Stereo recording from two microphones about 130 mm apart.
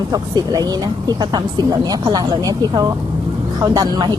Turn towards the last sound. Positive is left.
turn(degrees=-30)  # may be behind; listen again after turning